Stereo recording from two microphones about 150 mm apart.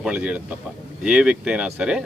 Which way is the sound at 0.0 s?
5° right (ahead or behind).